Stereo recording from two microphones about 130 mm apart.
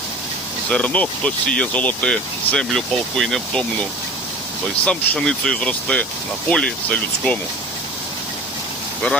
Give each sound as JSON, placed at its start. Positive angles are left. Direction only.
{"t": 0.7, "sound": "speech", "side_deg": 10}
{"t": 4.9, "sound": "speech", "side_deg": 5}